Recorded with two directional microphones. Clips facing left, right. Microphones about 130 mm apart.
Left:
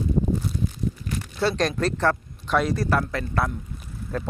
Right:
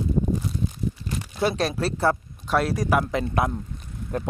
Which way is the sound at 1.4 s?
10° right (ahead or behind).